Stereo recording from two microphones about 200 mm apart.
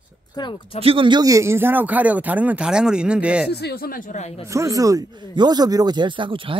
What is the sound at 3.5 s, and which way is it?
Speech, 55° left (ahead or behind).